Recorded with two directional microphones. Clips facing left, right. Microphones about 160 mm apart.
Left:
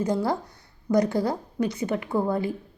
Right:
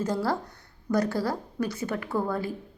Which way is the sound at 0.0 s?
15° left (ahead or behind).